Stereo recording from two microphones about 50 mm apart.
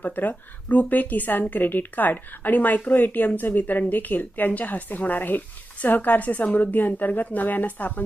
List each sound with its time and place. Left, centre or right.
0.0 s a woman's voice: left